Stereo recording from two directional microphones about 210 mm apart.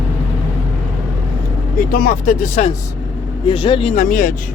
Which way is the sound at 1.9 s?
45° left (ahead or behind).